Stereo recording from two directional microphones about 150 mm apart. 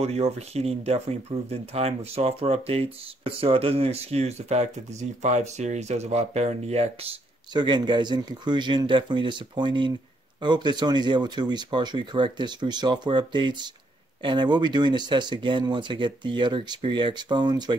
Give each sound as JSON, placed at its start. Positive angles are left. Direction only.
{"t": 0.0, "sound": "speech", "side_deg": -45}
{"t": 7.5, "sound": "speech", "side_deg": -30}